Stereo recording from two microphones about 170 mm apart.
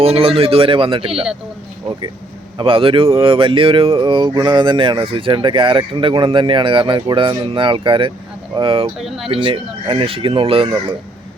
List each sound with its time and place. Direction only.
0.0 s speech: 35° right (ahead or behind)
2.6 s speech: 30° right (ahead or behind)
9.0 s speech: centre (ahead or behind)
9.3 s speech: 30° right (ahead or behind)